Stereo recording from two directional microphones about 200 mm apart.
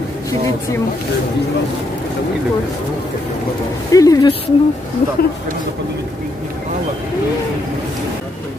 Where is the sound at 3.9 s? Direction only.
15° left (ahead or behind).